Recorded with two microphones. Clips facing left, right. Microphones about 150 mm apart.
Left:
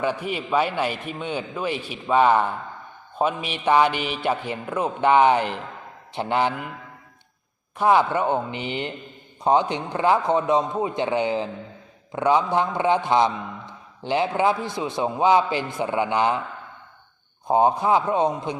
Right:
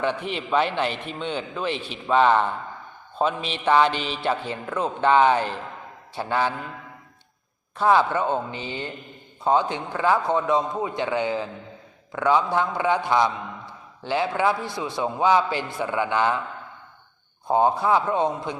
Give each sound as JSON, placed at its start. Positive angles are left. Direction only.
{"t": 0.0, "sound": "a man's voice", "side_deg": 10}
{"t": 7.8, "sound": "a man's voice", "side_deg": 15}
{"t": 17.5, "sound": "a man's voice", "side_deg": 20}